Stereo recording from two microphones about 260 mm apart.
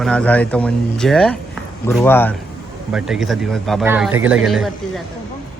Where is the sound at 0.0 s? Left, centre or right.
Centre.